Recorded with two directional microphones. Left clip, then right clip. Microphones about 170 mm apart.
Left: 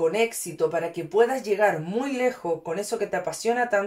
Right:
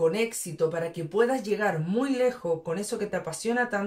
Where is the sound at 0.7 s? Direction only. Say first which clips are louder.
Left 4 dB; 30° left (ahead or behind).